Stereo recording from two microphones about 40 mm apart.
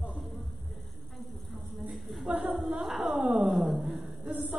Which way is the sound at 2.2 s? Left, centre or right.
Right.